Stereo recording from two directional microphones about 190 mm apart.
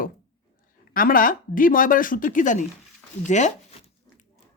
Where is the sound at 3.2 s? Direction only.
40° left (ahead or behind).